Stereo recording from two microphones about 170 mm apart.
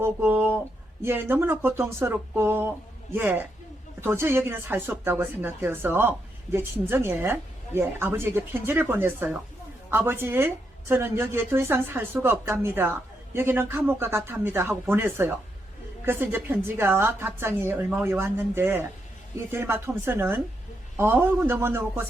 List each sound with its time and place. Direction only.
0.0 s speech: 15° right (ahead or behind)